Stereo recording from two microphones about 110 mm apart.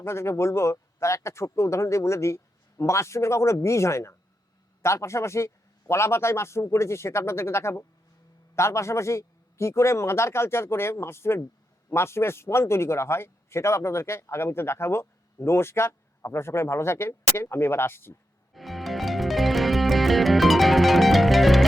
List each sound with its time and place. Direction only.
0.0 s a man's voice: 25° left (ahead or behind)
18.5 s music: centre (ahead or behind)